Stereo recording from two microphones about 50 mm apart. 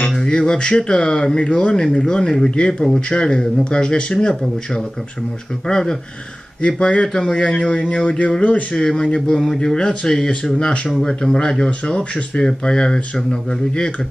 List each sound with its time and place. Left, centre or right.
0.2 s speech: centre
6.6 s speech: left